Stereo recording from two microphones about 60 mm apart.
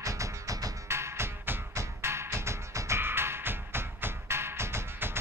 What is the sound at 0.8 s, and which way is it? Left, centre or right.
Music, right.